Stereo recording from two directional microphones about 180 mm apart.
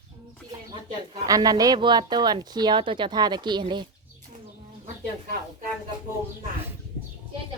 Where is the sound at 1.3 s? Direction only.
20° right (ahead or behind).